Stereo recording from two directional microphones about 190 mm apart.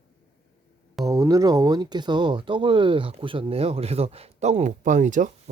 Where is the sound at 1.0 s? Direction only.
15° right (ahead or behind).